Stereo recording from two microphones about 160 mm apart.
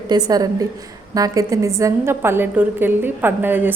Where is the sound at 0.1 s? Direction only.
25° right (ahead or behind).